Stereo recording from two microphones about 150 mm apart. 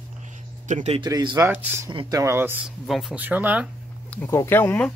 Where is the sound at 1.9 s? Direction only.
30° right (ahead or behind).